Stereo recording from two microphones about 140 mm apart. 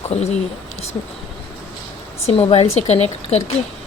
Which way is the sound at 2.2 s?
40° left (ahead or behind).